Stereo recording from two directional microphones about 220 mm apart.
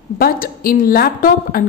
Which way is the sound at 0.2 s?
40° left (ahead or behind).